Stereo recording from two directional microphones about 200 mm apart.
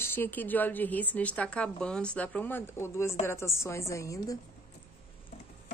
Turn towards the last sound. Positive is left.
turn(degrees=15)  # may be behind; listen again after turning